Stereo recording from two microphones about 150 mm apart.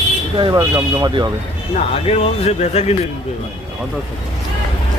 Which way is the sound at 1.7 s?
45° left (ahead or behind).